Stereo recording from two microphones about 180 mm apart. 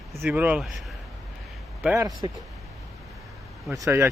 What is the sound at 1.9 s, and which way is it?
Speech, 20° right (ahead or behind).